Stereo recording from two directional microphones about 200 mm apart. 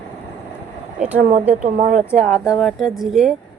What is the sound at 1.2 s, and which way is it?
Speech, 35° right (ahead or behind).